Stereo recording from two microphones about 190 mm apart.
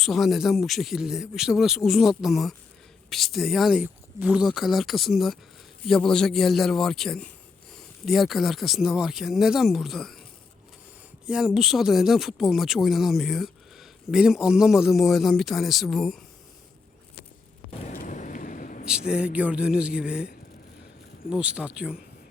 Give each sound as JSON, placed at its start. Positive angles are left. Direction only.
{"t": 0.0, "sound": "speech", "side_deg": 0}
{"t": 11.3, "sound": "speech", "side_deg": 0}
{"t": 17.7, "sound": "a sound", "side_deg": 40}
{"t": 18.9, "sound": "speech", "side_deg": -5}